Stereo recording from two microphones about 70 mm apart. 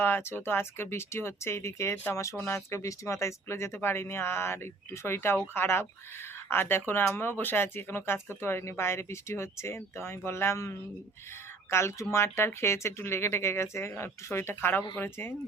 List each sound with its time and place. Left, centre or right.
0.0 s speech: left